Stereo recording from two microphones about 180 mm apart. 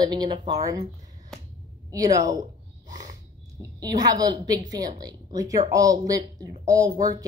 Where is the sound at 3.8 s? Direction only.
20° right (ahead or behind).